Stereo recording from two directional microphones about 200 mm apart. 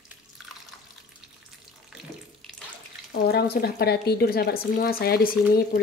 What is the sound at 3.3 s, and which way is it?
Speech, 50° left (ahead or behind).